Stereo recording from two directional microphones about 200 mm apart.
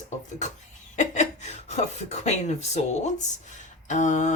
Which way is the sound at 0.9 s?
35° left (ahead or behind).